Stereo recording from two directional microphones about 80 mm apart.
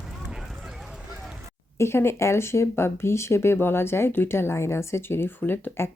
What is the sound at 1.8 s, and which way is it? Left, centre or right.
Speech, left.